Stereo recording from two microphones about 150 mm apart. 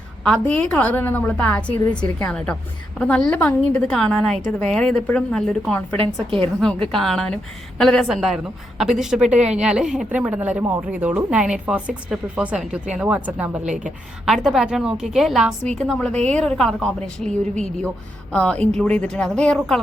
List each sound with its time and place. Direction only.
0.3 s a woman's voice: 5° left (ahead or behind)